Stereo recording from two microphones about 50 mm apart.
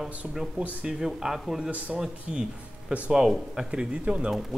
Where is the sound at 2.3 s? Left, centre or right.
Centre.